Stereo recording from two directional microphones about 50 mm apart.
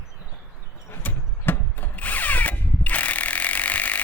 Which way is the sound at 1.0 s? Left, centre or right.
Left.